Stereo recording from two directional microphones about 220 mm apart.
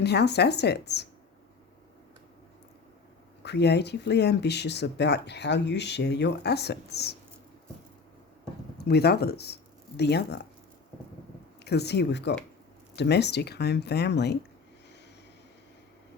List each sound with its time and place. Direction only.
0.0 s speech: 50° left (ahead or behind)
3.4 s speech: 50° left (ahead or behind)
8.8 s speech: 45° left (ahead or behind)
11.6 s speech: 50° left (ahead or behind)